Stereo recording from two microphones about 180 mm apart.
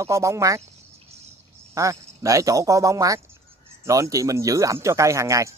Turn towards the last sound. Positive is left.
turn(degrees=-15)  # may be behind; listen again after turning